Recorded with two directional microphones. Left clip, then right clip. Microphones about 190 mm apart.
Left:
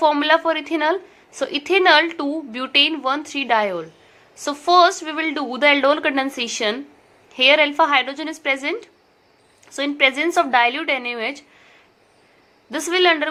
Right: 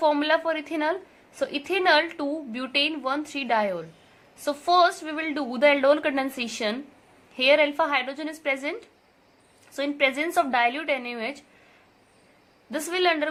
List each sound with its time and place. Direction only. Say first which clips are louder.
0.0 s a woman's voice: left 6 dB; 5° left (ahead or behind)
12.7 s a woman's voice: left 7 dB; 5° left (ahead or behind)